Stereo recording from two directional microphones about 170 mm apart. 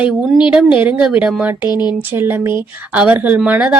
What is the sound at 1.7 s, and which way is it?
Speech, 25° left (ahead or behind).